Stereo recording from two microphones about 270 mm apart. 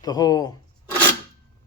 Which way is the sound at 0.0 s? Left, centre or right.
Centre.